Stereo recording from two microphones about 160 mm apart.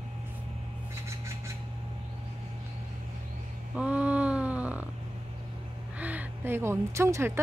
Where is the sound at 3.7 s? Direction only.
10° right (ahead or behind).